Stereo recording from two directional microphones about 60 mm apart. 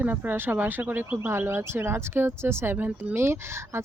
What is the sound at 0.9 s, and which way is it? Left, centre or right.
Speech, right.